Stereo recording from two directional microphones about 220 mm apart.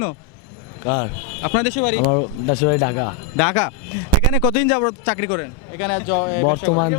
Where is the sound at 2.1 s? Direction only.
25° left (ahead or behind).